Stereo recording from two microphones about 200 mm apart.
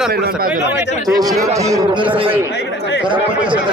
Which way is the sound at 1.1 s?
20° right (ahead or behind).